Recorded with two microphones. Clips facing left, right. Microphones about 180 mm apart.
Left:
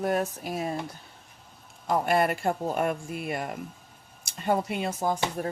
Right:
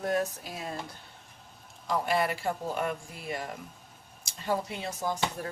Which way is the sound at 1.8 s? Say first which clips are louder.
Left 4 dB; 50° left (ahead or behind).